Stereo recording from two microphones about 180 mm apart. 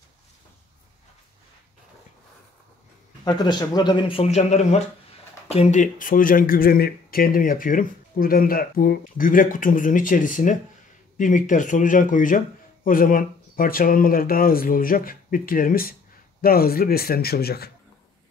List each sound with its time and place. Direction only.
3.3 s speech: 25° left (ahead or behind); by 17.6 s 60° left (ahead or behind)